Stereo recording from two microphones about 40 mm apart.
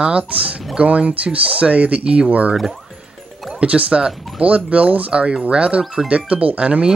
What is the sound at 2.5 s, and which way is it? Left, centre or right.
Speech, centre.